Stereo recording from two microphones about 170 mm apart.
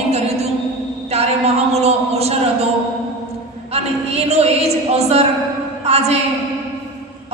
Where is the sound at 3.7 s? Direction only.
40° right (ahead or behind).